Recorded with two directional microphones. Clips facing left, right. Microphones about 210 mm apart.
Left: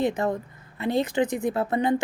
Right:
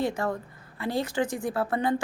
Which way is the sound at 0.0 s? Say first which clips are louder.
Left 3 dB; 20° left (ahead or behind).